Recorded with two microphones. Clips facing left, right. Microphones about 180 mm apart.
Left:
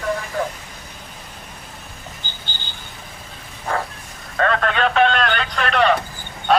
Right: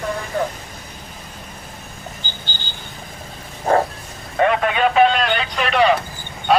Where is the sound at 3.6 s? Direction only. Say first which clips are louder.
Right 8 dB; 40° right (ahead or behind).